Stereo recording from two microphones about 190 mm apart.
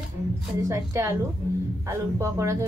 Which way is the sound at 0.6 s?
15° right (ahead or behind).